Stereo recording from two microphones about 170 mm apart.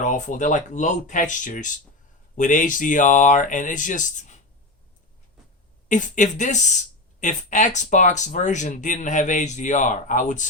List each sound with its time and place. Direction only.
0.0 s speech: 45° left (ahead or behind)
5.9 s speech: 45° left (ahead or behind)